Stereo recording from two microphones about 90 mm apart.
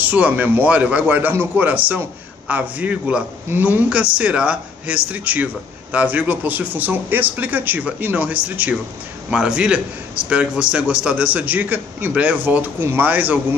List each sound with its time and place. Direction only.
0.0 s speech: 20° right (ahead or behind)